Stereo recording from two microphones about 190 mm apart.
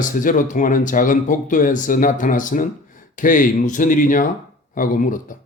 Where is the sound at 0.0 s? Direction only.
45° left (ahead or behind).